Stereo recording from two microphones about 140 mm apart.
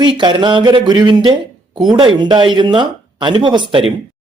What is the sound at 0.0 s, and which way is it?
Speech, 35° right (ahead or behind).